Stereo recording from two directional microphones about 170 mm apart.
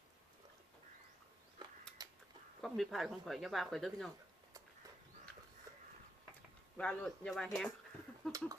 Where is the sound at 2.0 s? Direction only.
25° right (ahead or behind).